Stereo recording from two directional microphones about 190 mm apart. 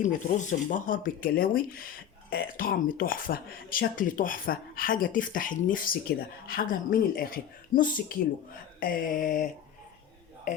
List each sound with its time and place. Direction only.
0.0 s speech: 40° left (ahead or behind)